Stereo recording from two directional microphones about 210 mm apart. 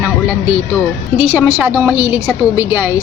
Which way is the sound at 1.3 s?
5° right (ahead or behind).